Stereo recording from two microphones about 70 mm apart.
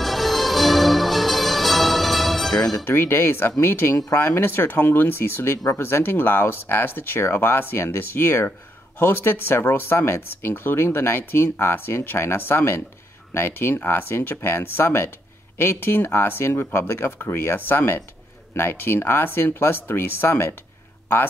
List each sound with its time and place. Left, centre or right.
0.0 s music: centre
2.9 s speech: left